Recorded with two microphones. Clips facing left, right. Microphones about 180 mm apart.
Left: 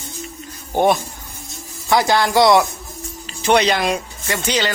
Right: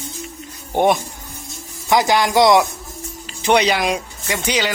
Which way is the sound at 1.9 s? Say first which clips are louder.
Even; 15° right (ahead or behind).